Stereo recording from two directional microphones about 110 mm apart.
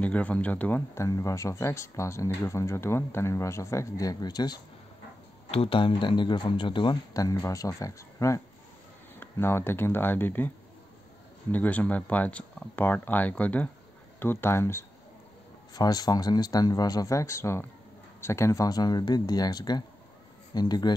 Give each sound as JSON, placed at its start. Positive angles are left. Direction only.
{"t": 0.0, "sound": "speech", "side_deg": 15}
{"t": 1.0, "sound": "speech", "side_deg": 30}
{"t": 5.5, "sound": "speech", "side_deg": 60}
{"t": 7.2, "sound": "speech", "side_deg": 30}
{"t": 11.5, "sound": "speech", "side_deg": 15}
{"t": 15.7, "sound": "speech", "side_deg": 35}